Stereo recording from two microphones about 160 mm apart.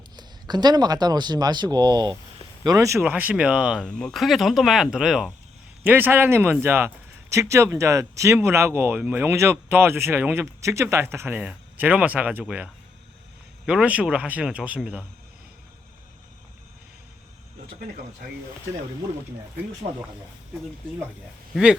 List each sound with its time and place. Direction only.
0.2 s speech: 25° right (ahead or behind); by 15.0 s 5° right (ahead or behind)
19.8 s speech: 50° right (ahead or behind)
21.5 s speech: 5° right (ahead or behind)